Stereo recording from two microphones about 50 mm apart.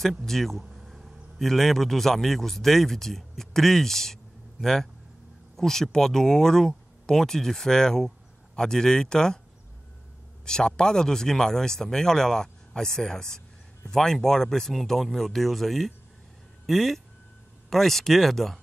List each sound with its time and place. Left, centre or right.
0.2 s speech: centre
0.7 s a sound: centre
1.4 s speech: centre
10.4 s speech: centre